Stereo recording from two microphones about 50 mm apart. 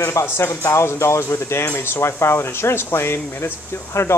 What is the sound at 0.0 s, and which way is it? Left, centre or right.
Speech, left.